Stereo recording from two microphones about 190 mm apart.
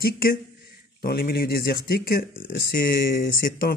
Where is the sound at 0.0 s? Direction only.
50° left (ahead or behind).